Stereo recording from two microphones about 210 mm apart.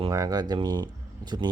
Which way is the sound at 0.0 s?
15° right (ahead or behind).